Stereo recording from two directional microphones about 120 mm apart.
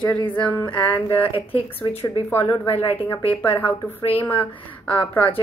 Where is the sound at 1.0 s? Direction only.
45° left (ahead or behind).